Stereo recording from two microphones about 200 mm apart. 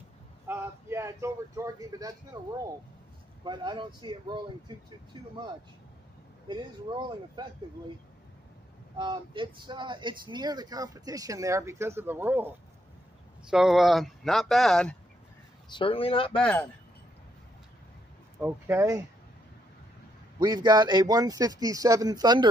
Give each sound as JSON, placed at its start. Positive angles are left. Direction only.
{"t": 0.5, "sound": "speech", "side_deg": -10}
{"t": 6.4, "sound": "speech", "side_deg": -20}
{"t": 8.9, "sound": "speech", "side_deg": -20}
{"t": 15.7, "sound": "speech", "side_deg": 25}
{"t": 18.4, "sound": "speech", "side_deg": -10}
{"t": 20.3, "sound": "speech", "side_deg": -20}